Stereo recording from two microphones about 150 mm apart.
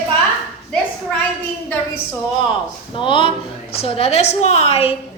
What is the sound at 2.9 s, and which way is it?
A woman's voice, 35° left (ahead or behind).